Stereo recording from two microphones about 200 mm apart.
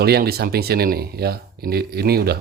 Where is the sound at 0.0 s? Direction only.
50° right (ahead or behind).